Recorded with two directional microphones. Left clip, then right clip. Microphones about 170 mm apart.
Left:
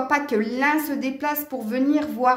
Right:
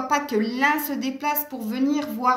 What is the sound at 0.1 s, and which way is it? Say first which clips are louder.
A woman's voice: right 1 dB; 40° left (ahead or behind).